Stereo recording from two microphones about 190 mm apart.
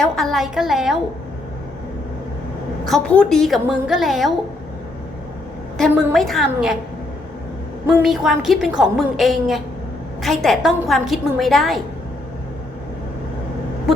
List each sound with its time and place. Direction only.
0.0 s a woman's voice: centre (ahead or behind)
2.8 s a woman's voice: 5° left (ahead or behind)
6.1 s a woman's voice: centre (ahead or behind)
7.9 s a woman's voice: 5° right (ahead or behind)